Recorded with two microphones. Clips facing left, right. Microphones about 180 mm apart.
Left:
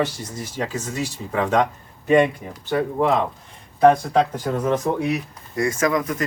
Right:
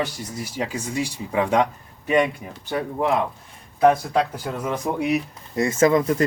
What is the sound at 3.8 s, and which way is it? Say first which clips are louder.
Speech: left 2 dB; 5° right (ahead or behind).